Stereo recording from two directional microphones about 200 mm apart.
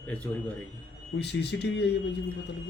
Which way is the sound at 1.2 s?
55° left (ahead or behind).